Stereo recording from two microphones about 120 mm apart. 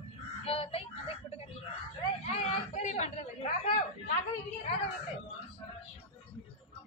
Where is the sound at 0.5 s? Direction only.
50° left (ahead or behind).